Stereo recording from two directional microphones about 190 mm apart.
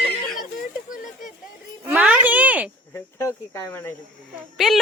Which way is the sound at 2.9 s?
15° left (ahead or behind).